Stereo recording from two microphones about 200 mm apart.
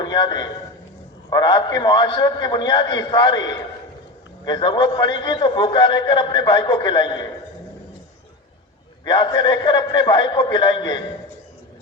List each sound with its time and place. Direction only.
0.0 s a man's voice: 20° left (ahead or behind)
9.0 s a man's voice: 20° left (ahead or behind)